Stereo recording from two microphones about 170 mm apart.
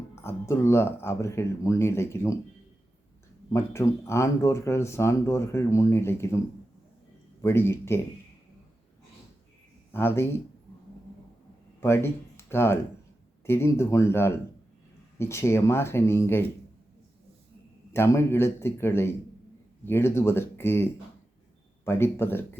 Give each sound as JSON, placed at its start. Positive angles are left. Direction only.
{"t": 0.2, "sound": "speech", "side_deg": 15}
{"t": 3.5, "sound": "speech", "side_deg": 15}
{"t": 7.4, "sound": "speech", "side_deg": 15}
{"t": 9.9, "sound": "speech", "side_deg": 15}
{"t": 11.8, "sound": "speech", "side_deg": 15}
{"t": 17.9, "sound": "speech", "side_deg": 15}
{"t": 21.8, "sound": "speech", "side_deg": 15}